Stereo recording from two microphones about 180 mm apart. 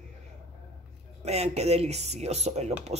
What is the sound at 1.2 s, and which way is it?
Speech, 35° right (ahead or behind).